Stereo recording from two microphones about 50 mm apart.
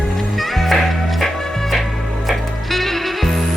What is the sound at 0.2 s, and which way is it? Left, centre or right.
Music, centre.